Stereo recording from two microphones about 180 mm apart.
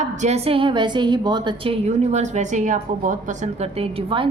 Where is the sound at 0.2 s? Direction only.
35° right (ahead or behind).